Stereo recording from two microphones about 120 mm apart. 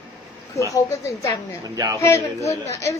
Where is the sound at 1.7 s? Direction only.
30° right (ahead or behind).